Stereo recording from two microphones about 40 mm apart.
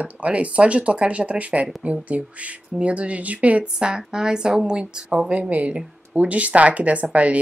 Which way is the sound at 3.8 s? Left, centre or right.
Centre.